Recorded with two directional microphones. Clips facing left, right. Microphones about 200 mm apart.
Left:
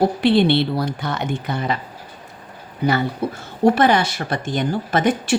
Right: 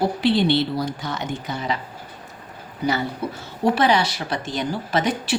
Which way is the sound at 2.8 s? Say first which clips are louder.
Left 4 dB; 60° left (ahead or behind).